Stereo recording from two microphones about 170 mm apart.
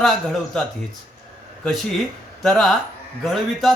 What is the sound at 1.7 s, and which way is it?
A man's voice, centre (ahead or behind).